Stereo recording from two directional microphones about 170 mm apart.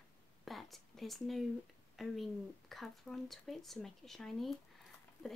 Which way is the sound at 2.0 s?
Centre (ahead or behind).